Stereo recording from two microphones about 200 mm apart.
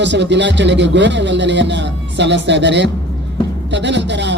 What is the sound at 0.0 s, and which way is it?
Speech, 60° right (ahead or behind).